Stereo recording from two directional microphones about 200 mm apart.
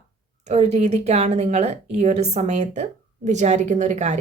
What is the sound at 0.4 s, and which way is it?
Speech, 35° right (ahead or behind).